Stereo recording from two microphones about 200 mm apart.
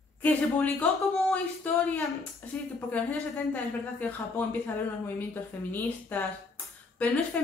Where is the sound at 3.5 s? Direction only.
10° left (ahead or behind).